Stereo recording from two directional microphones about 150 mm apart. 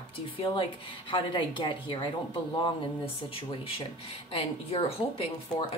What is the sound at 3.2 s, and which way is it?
A woman's voice, 40° left (ahead or behind).